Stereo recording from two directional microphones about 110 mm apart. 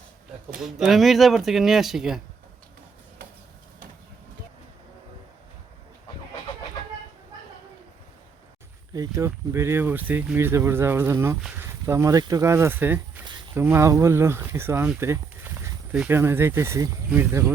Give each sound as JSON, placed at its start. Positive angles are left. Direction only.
{"t": 0.6, "sound": "speech", "side_deg": 0}
{"t": 8.9, "sound": "speech", "side_deg": -30}
{"t": 15.0, "sound": "a sound", "side_deg": -25}
{"t": 15.9, "sound": "speech", "side_deg": -15}